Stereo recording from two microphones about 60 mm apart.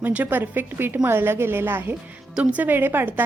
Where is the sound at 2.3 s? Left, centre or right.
Right.